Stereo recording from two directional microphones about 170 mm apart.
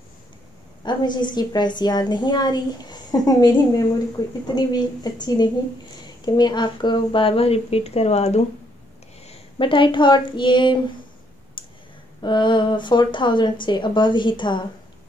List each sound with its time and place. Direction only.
0.8 s a woman's voice: 25° left (ahead or behind)
11.6 s clicking: 30° left (ahead or behind)
12.2 s a woman's voice: 25° left (ahead or behind)